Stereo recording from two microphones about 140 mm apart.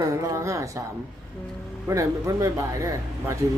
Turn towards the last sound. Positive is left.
turn(degrees=-20)  # may be behind; listen again after turning